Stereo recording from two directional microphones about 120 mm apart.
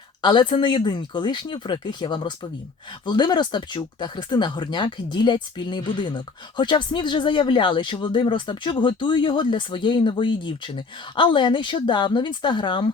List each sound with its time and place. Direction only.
0.2 s speech: 40° left (ahead or behind)